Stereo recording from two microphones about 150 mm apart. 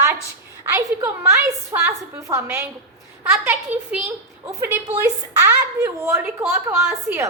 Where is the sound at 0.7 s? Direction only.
15° right (ahead or behind).